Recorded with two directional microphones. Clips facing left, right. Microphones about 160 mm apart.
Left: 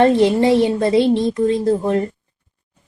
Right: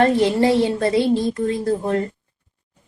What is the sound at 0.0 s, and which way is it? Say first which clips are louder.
Speech: left 3 dB; 20° left (ahead or behind).